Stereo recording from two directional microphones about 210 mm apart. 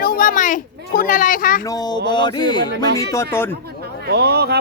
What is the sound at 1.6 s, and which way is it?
Speech, 20° left (ahead or behind).